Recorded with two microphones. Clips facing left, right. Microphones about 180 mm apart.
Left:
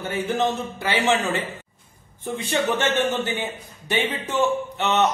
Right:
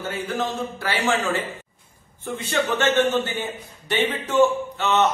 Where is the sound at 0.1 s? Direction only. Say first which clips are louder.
Left 5 dB; 20° left (ahead or behind).